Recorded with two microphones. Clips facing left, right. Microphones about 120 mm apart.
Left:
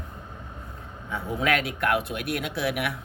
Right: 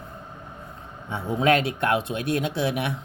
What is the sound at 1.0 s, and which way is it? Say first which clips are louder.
Speech: right 5 dB; 30° right (ahead or behind).